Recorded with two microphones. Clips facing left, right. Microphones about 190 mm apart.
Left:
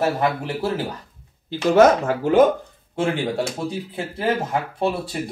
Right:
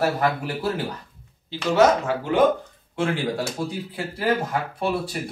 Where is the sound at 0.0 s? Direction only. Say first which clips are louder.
Left 1 dB; 20° left (ahead or behind).